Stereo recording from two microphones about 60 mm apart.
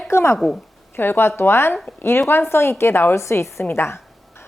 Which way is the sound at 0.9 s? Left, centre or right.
Left.